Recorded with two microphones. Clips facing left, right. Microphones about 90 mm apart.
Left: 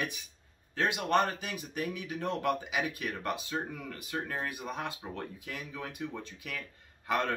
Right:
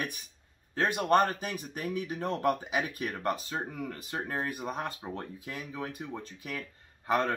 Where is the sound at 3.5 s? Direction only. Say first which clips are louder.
Right 1 dB; 25° right (ahead or behind).